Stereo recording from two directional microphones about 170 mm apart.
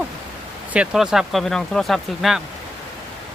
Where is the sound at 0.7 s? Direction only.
5° right (ahead or behind).